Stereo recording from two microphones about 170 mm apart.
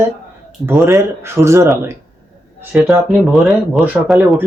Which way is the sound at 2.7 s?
5° right (ahead or behind).